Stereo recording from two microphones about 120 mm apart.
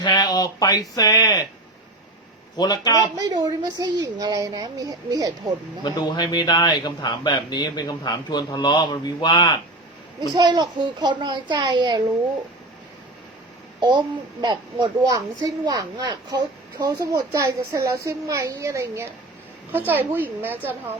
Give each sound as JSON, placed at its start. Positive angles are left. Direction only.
{"t": 0.0, "sound": "a man's voice", "side_deg": 35}
{"t": 2.6, "sound": "a man's voice", "side_deg": 35}
{"t": 3.2, "sound": "a woman's voice", "side_deg": -30}
{"t": 5.8, "sound": "a man's voice", "side_deg": 35}
{"t": 10.3, "sound": "a woman's voice", "side_deg": -35}
{"t": 13.7, "sound": "a child's voice", "side_deg": -40}